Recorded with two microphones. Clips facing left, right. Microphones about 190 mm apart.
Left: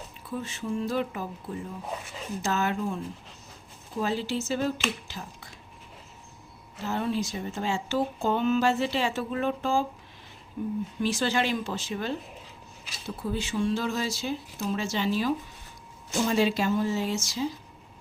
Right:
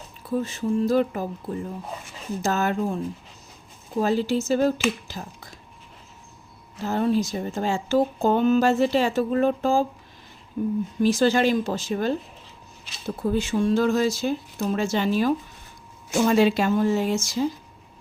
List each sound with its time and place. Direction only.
0.3 s speech: 40° right (ahead or behind)
2.4 s speech: 45° right (ahead or behind)
5.0 s a sound: 40° right (ahead or behind)
6.8 s speech: 40° right (ahead or behind)
16.1 s speech: 65° right (ahead or behind); by 17.4 s 50° right (ahead or behind)